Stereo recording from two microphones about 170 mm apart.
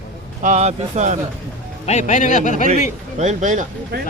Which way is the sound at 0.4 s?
40° right (ahead or behind).